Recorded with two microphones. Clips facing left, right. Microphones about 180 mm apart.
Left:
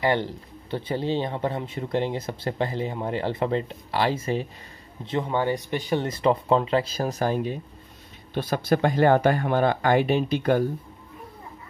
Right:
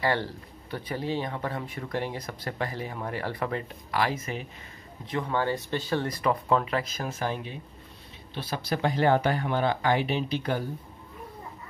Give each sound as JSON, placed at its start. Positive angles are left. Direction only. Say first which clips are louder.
{"t": 0.0, "sound": "speech", "louder": "left 4 dB", "side_deg": 20}